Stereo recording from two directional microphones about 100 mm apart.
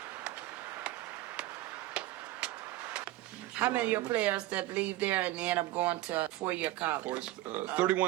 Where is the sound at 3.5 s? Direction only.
15° right (ahead or behind).